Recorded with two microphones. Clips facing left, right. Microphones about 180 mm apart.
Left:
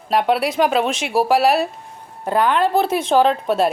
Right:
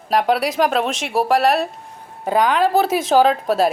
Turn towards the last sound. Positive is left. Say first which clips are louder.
# right 1 dB
turn(degrees=0)  # may be behind; listen again after turning